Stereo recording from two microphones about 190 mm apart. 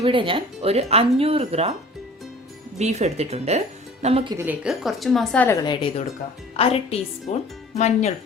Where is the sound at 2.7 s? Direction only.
35° right (ahead or behind).